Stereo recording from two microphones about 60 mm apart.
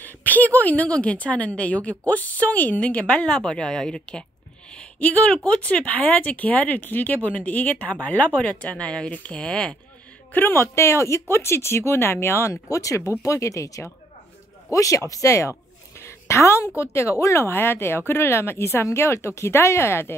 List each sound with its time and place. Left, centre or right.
0.0 s speech: left
3.3 s speech: centre
5.0 s speech: left
10.3 s speech: left
10.6 s a woman's voice: left
16.0 s a sound: left
16.8 s a woman's voice: left